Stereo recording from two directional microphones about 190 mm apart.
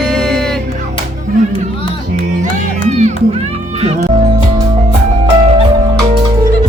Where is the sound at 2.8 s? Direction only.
35° right (ahead or behind).